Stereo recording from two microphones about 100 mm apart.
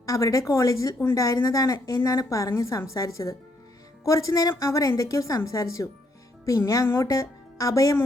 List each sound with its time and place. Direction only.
0.0 s a woman's voice: 30° left (ahead or behind)